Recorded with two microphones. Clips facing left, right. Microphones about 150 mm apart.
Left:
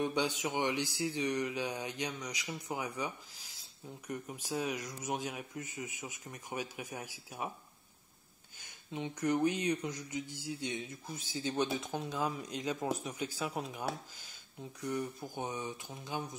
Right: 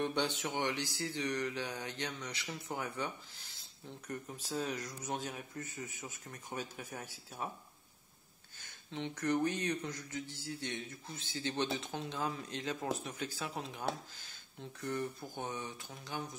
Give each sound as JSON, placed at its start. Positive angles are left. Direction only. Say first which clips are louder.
{"t": 0.0, "sound": "speech", "louder": "left 2 dB", "side_deg": 10}
{"t": 8.5, "sound": "speech", "louder": "left 1 dB", "side_deg": 15}